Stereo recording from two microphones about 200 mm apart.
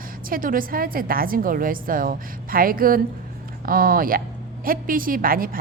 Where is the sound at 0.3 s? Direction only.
45° right (ahead or behind).